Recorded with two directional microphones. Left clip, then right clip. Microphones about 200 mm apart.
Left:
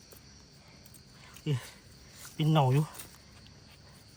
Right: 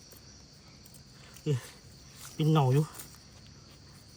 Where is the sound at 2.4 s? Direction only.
5° left (ahead or behind).